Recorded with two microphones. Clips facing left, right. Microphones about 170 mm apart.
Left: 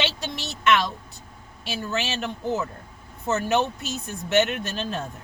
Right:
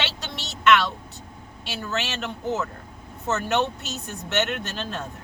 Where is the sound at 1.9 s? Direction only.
15° left (ahead or behind).